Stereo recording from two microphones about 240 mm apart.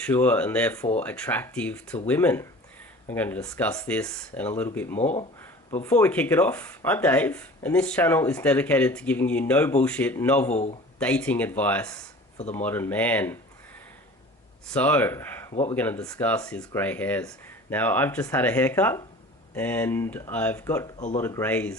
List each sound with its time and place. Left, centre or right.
0.0 s speech: centre
4.9 s speech: left
5.8 s speech: centre
10.5 s speech: left
11.0 s speech: centre
14.7 s speech: centre